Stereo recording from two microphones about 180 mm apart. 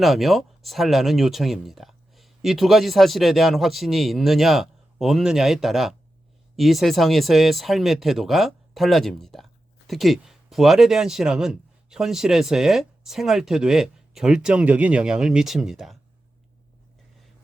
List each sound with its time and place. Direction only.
0.0 s speech: centre (ahead or behind)